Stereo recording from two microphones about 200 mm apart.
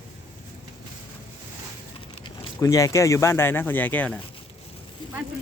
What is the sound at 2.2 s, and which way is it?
Speech, 15° left (ahead or behind).